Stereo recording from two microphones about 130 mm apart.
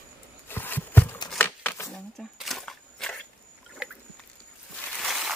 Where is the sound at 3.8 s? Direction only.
5° right (ahead or behind).